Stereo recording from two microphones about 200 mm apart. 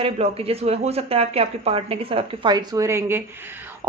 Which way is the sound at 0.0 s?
30° right (ahead or behind).